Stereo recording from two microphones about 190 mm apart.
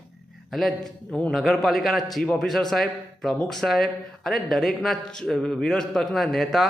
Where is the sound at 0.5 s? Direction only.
Centre (ahead or behind).